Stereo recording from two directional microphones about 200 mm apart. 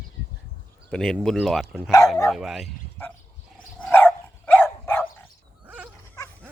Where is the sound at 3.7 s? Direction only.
10° left (ahead or behind).